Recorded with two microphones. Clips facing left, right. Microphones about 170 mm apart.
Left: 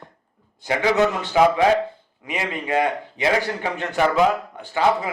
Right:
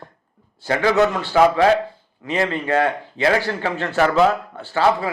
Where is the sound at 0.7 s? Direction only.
20° left (ahead or behind).